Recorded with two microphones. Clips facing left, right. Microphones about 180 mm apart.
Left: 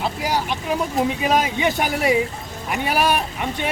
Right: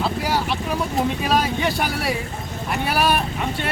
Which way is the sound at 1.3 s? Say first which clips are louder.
Left 1 dB; 15° left (ahead or behind).